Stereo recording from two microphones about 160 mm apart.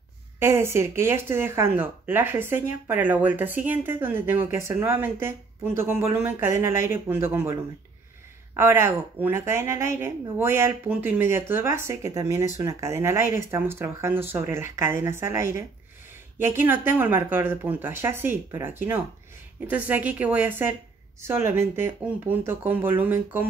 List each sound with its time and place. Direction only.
0.4 s speech: 15° right (ahead or behind)
8.5 s speech: 15° right (ahead or behind)
16.6 s speech: 15° right (ahead or behind)